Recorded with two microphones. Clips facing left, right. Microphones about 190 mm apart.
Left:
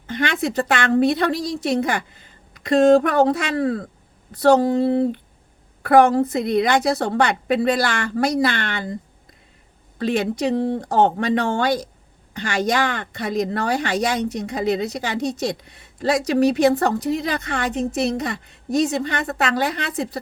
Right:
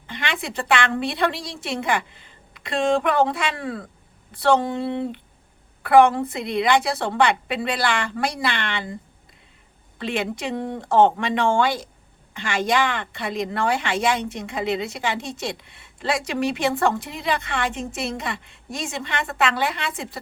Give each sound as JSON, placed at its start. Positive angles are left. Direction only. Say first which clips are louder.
{"t": 0.1, "sound": "a woman's voice", "louder": "left 7 dB", "side_deg": 45}
{"t": 10.0, "sound": "a woman's voice", "louder": "left 6 dB", "side_deg": 40}